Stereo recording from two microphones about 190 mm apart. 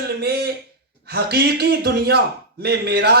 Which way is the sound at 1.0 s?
55° right (ahead or behind).